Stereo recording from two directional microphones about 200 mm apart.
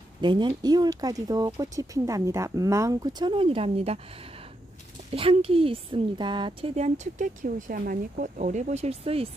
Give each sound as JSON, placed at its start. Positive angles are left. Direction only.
{"t": 0.2, "sound": "speech", "side_deg": -20}
{"t": 5.1, "sound": "a woman's voice", "side_deg": -30}